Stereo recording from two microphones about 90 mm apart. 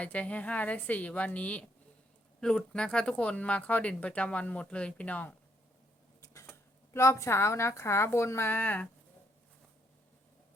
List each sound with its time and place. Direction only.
0.0 s speech: 15° left (ahead or behind)
6.2 s a sound: 35° left (ahead or behind)
6.9 s a woman's voice: 30° left (ahead or behind)